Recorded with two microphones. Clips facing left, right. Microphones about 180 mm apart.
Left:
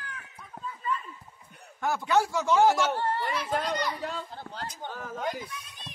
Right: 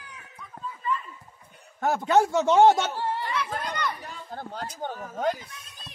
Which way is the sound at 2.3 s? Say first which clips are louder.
Right 5 dB; 25° right (ahead or behind).